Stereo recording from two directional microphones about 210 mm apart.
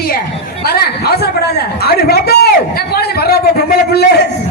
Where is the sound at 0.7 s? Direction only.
50° left (ahead or behind).